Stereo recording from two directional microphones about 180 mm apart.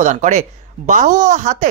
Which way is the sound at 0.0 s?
40° right (ahead or behind).